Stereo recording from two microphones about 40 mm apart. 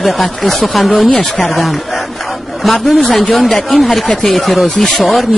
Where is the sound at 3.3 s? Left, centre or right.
Centre.